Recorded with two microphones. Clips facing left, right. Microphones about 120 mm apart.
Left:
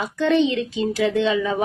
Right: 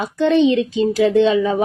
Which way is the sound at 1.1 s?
35° right (ahead or behind).